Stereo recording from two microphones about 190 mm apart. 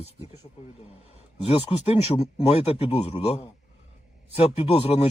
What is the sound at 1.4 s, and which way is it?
Speech, 30° left (ahead or behind).